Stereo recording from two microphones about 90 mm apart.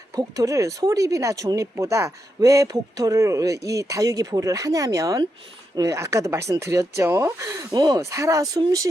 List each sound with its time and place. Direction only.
0.2 s speech: 40° right (ahead or behind)
7.7 s speech: 45° right (ahead or behind)